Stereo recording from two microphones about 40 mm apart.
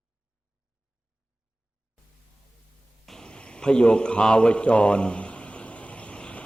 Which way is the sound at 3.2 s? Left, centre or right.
Left.